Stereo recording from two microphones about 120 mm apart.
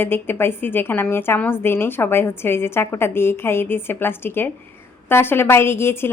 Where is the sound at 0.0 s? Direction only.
20° left (ahead or behind).